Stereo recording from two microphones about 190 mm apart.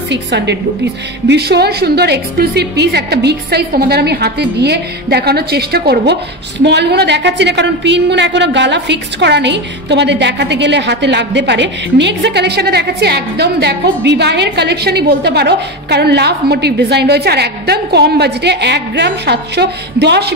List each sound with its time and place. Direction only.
0.1 s a woman's voice: 65° right (ahead or behind)